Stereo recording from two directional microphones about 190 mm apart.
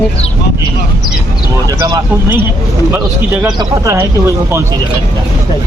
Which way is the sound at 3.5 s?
15° right (ahead or behind).